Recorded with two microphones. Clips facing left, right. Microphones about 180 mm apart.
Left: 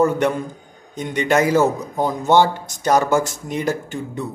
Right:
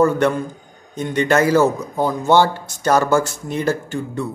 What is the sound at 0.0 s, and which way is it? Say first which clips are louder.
Speech: right 2 dB; 15° left (ahead or behind).